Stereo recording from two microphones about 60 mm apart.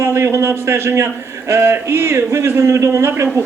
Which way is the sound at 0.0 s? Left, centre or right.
Right.